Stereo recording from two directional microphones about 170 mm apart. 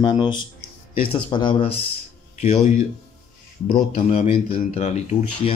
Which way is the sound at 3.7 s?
35° left (ahead or behind).